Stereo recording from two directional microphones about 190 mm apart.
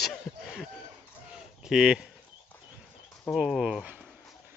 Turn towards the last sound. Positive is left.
turn(degrees=-5)  # may be behind; listen again after turning